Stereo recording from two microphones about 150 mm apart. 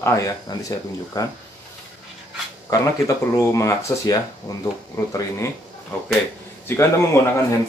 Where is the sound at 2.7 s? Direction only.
20° left (ahead or behind).